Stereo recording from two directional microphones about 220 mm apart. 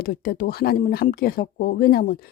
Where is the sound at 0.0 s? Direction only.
45° left (ahead or behind).